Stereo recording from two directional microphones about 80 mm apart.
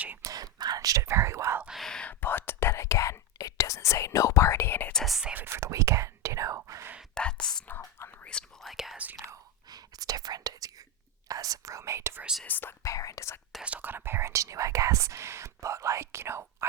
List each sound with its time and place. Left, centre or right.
0.2 s speech: right
1.8 s whispering: centre
2.2 s whispering: left
4.9 s whispering: centre
5.3 s whispering: right
5.5 s whispering: right
7.1 s whispering: centre
8.6 s whispering: centre
9.6 s whispering: right
12.5 s speech: left
12.8 s whispering: left
13.7 s whispering: right